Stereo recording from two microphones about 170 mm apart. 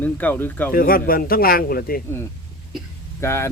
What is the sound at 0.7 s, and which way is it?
Speech, 60° left (ahead or behind).